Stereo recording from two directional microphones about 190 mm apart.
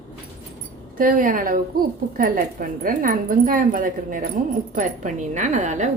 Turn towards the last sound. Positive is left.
turn(degrees=-40)  # may be behind; listen again after turning